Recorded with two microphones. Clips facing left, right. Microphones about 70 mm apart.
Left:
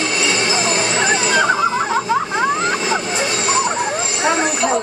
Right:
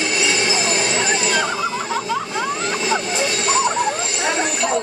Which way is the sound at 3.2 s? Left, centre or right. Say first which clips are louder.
Left 1 dB; centre.